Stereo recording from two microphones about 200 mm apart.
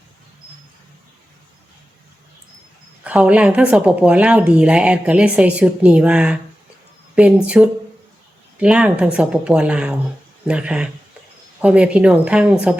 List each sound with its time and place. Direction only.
3.0 s a woman's voice: 5° right (ahead or behind)
7.4 s a woman's voice: 5° right (ahead or behind)